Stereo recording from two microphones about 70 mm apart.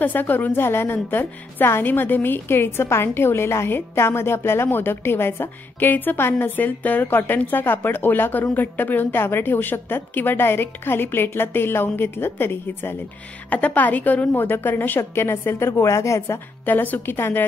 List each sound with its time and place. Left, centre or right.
0.0 s a woman's voice: left
13.5 s a woman's voice: left
16.6 s a woman's voice: left